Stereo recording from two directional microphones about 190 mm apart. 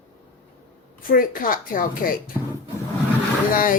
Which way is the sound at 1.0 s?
45° left (ahead or behind).